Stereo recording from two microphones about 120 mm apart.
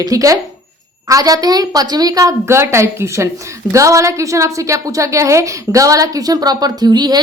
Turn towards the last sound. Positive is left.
turn(degrees=-35)  # may be behind; listen again after turning